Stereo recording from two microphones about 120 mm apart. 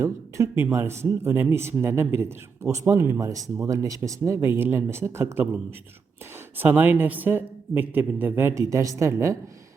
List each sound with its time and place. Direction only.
0.0 s speech: 20° right (ahead or behind)
6.6 s a woman's voice: 15° right (ahead or behind)